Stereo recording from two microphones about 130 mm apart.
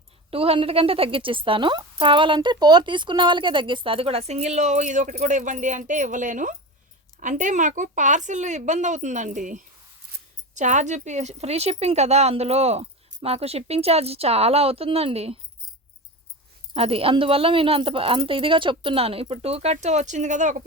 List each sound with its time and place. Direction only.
0.3 s a woman's voice: 45° right (ahead or behind); by 9.6 s 85° right
10.5 s a woman's voice: 70° right (ahead or behind); by 15.4 s 50° right (ahead or behind)
16.7 s a woman's voice: 50° right (ahead or behind); by 20.6 s 70° right (ahead or behind)